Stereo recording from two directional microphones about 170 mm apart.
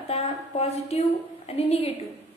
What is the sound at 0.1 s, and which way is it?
A woman's voice, 40° left (ahead or behind).